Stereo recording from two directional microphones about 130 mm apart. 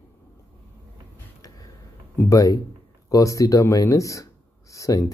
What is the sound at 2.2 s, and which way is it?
Speech, 25° left (ahead or behind).